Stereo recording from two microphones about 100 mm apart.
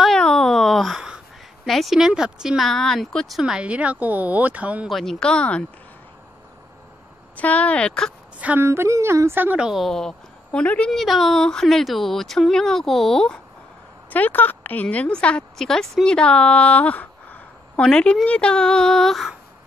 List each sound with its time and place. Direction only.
0.0 s a sound: 5° left (ahead or behind)
1.7 s speech: centre (ahead or behind)
4.8 s a woman's voice: 5° left (ahead or behind)
7.3 s a woman's voice: 15° left (ahead or behind)
8.4 s speech: 15° right (ahead or behind)
8.6 s speech: 30° right (ahead or behind)
9.6 s a woman's voice: 5° right (ahead or behind)
14.1 s a woman's voice: 20° left (ahead or behind); by 19.3 s centre (ahead or behind)